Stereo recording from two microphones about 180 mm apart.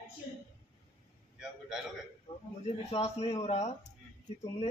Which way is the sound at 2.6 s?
35° left (ahead or behind).